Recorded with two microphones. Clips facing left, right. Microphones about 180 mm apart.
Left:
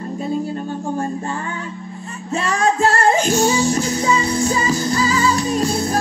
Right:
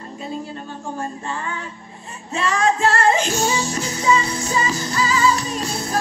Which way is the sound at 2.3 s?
35° left (ahead or behind).